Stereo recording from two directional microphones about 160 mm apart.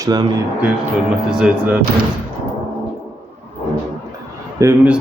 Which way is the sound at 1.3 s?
5° right (ahead or behind).